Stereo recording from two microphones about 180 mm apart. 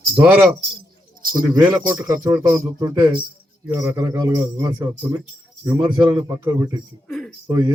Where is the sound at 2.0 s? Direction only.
20° right (ahead or behind).